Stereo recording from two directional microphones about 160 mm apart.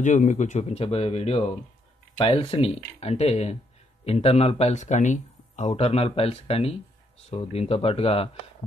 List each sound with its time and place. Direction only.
0.0 s speech: 50° left (ahead or behind)